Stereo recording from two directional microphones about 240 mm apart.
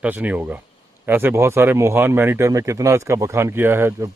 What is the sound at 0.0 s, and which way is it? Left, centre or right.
Speech, centre.